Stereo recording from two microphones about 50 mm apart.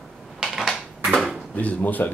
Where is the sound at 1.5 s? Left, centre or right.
Left.